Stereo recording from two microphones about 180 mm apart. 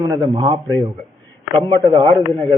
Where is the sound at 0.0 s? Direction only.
25° right (ahead or behind).